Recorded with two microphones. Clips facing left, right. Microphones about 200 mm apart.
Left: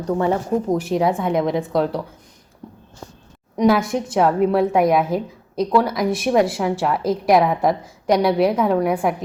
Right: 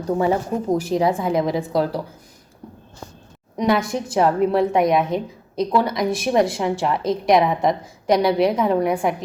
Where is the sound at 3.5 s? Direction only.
Centre (ahead or behind).